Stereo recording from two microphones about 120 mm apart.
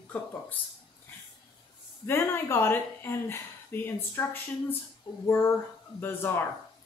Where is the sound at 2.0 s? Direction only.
20° left (ahead or behind).